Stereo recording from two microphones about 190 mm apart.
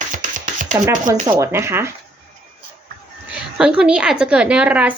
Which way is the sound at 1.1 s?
15° right (ahead or behind).